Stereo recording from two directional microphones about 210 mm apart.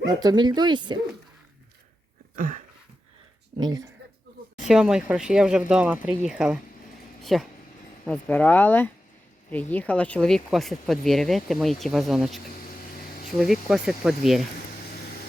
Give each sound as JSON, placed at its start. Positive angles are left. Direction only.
{"t": 0.0, "sound": "speech", "side_deg": -20}
{"t": 2.3, "sound": "a sound", "side_deg": -40}
{"t": 3.6, "sound": "speech", "side_deg": -20}
{"t": 4.7, "sound": "speech", "side_deg": -5}